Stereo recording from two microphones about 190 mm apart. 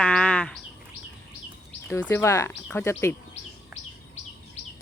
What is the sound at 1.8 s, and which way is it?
Speech, 10° left (ahead or behind).